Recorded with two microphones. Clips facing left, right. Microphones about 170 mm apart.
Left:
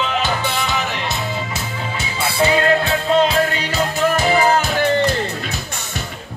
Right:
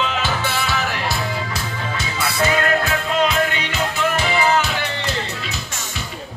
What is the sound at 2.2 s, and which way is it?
Music, 30° left (ahead or behind).